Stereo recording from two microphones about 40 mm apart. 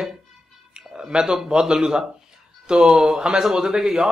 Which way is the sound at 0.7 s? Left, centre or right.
Right.